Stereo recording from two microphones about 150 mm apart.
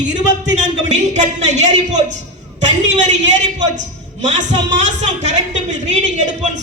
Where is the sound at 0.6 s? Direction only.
50° right (ahead or behind).